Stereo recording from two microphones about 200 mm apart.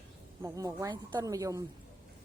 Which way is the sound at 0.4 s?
15° right (ahead or behind).